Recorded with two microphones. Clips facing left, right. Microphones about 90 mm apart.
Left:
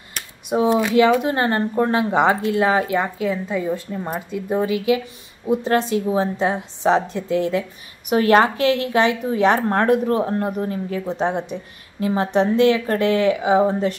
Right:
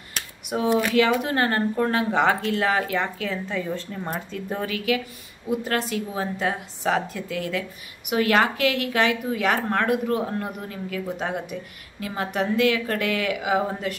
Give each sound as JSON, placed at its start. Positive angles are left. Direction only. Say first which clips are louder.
{"t": 0.7, "sound": "a woman's voice", "louder": "left 4 dB", "side_deg": 20}